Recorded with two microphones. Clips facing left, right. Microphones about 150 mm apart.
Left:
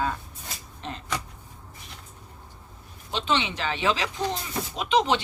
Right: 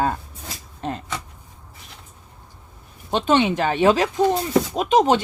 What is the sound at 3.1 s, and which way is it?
Speech, 50° right (ahead or behind).